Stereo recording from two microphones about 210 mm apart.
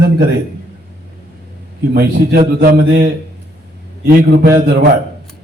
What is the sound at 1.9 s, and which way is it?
A man's voice, 50° right (ahead or behind).